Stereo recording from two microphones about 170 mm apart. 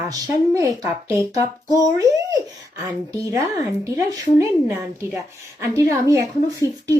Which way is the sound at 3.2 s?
20° right (ahead or behind).